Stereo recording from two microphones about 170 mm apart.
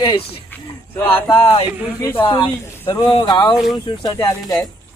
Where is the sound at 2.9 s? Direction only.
25° left (ahead or behind).